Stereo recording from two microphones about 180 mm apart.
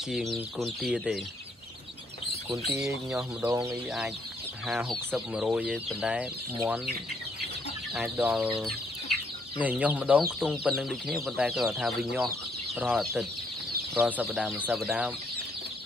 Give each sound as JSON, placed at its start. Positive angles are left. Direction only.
{"t": 0.1, "sound": "speech", "side_deg": 0}
{"t": 3.4, "sound": "speech", "side_deg": -20}
{"t": 4.9, "sound": "speech", "side_deg": -5}
{"t": 7.9, "sound": "speech", "side_deg": -10}
{"t": 9.6, "sound": "speech", "side_deg": -10}